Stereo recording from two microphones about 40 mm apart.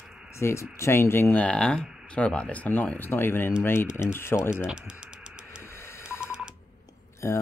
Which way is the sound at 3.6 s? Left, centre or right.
Left.